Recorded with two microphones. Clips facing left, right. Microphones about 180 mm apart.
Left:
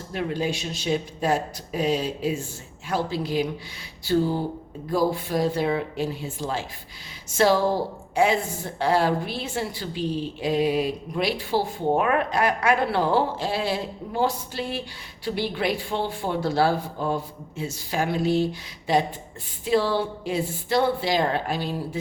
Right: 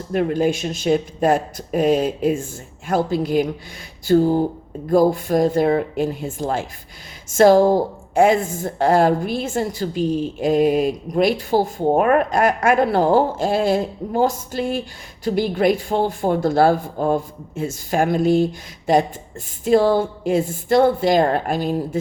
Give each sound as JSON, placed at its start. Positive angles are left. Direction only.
{"t": 0.1, "sound": "a woman's voice", "side_deg": -50}